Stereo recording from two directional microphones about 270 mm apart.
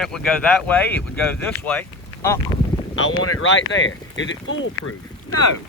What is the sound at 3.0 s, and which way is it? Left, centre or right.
Speech, left.